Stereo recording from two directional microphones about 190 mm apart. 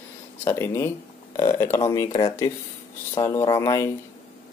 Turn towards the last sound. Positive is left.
turn(degrees=20)  # may be behind; listen again after turning